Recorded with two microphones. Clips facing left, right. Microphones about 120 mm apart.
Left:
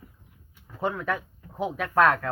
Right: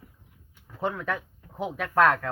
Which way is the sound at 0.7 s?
15° left (ahead or behind).